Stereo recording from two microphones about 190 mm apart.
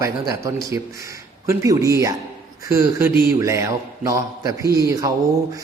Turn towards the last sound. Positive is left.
turn(degrees=-20)  # may be behind; listen again after turning